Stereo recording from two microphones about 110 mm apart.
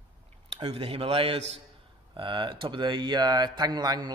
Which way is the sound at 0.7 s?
60° right (ahead or behind).